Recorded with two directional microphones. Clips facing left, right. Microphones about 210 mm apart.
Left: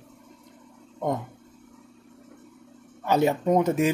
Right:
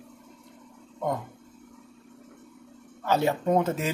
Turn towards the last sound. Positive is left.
turn(degrees=15)  # may be behind; listen again after turning